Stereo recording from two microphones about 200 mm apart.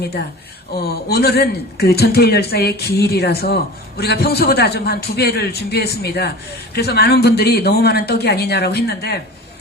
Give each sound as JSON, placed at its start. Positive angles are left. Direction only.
{"t": 0.0, "sound": "speech", "side_deg": 55}